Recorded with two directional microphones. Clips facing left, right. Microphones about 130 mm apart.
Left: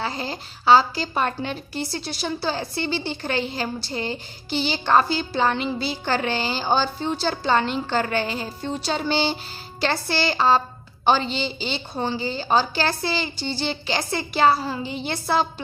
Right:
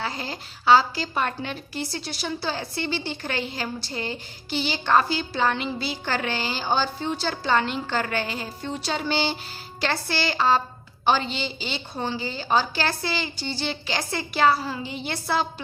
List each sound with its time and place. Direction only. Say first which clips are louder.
0.0 s a woman's voice: left 3 dB; 30° left (ahead or behind)